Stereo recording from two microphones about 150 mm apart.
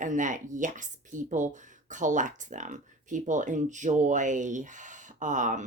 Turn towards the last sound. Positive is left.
turn(degrees=-55)  # may be behind; listen again after turning